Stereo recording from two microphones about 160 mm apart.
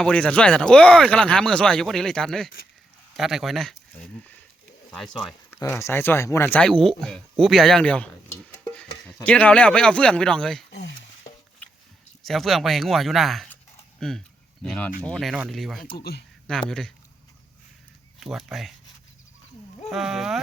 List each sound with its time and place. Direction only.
0.0 s speech: 5° left (ahead or behind)
5.5 s speech: 15° left (ahead or behind)
8.7 s stir: 5° left (ahead or behind)
9.2 s speech: 10° left (ahead or behind)
10.7 s a sound: 90° left
12.2 s speech: centre (ahead or behind)
18.2 s speech: centre (ahead or behind)
19.9 s speech: centre (ahead or behind)